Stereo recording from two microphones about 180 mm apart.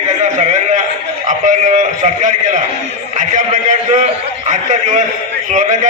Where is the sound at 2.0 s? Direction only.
45° right (ahead or behind).